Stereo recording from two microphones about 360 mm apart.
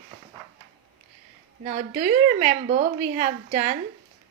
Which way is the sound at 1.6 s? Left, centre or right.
Right.